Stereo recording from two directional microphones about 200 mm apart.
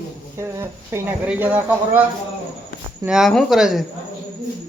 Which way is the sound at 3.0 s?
5° right (ahead or behind).